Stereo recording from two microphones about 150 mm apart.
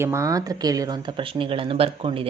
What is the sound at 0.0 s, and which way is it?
Speech, 20° right (ahead or behind).